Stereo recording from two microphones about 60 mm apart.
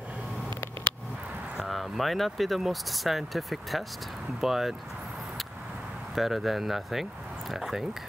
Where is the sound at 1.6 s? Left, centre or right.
Centre.